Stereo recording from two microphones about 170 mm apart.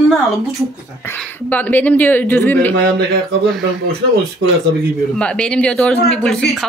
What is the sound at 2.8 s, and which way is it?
Speech, 65° right (ahead or behind).